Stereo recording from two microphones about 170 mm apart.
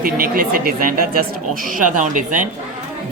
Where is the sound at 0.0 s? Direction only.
55° right (ahead or behind).